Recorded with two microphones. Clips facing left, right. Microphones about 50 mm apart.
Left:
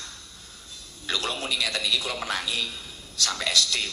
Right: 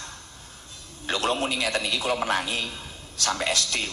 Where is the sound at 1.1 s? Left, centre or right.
Right.